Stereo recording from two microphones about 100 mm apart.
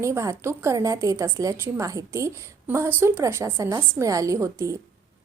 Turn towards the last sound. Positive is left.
turn(degrees=-30)  # may be behind; listen again after turning